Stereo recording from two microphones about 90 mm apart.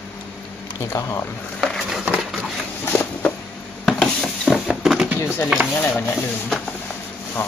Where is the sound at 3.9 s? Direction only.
5° left (ahead or behind).